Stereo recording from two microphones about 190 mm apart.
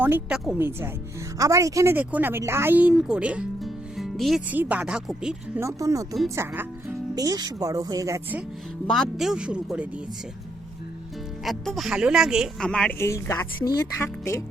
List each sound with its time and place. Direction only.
0.0 s speech: 5° right (ahead or behind)
5.5 s speech: 15° right (ahead or behind)
8.9 s a woman's voice: centre (ahead or behind)
11.4 s a woman's voice: centre (ahead or behind); by 14.4 s 15° left (ahead or behind)